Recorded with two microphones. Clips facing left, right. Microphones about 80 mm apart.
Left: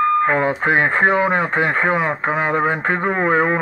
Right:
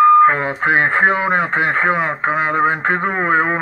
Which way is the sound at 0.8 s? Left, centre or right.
Centre.